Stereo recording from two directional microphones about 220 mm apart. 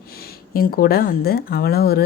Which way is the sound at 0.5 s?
40° left (ahead or behind).